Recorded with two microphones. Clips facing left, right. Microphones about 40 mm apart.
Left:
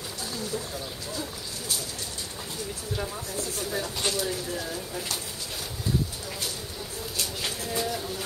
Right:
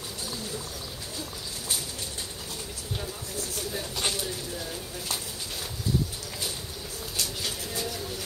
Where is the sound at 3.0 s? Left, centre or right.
Left.